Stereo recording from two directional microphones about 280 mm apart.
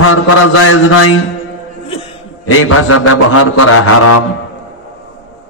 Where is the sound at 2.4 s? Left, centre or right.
Left.